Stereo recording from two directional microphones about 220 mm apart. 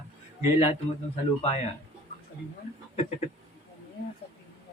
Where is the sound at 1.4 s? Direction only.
30° left (ahead or behind).